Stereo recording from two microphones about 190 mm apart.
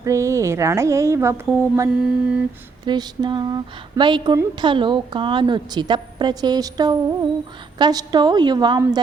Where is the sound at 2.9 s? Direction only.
20° right (ahead or behind).